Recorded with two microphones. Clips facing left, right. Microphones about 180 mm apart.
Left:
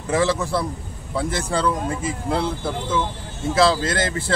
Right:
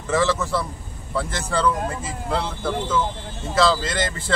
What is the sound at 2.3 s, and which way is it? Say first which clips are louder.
A man's voice: right 1 dB; 10° left (ahead or behind).